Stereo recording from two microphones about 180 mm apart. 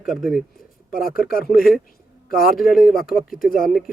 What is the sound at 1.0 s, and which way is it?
Speech, 55° left (ahead or behind).